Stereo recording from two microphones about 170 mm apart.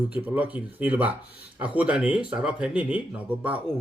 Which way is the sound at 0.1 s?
10° right (ahead or behind).